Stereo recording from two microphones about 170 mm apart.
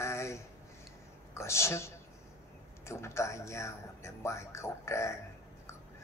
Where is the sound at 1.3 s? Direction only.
15° left (ahead or behind).